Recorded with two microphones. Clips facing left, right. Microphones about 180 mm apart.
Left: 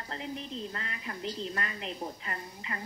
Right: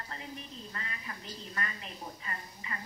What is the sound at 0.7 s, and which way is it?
A woman's voice, 70° left (ahead or behind).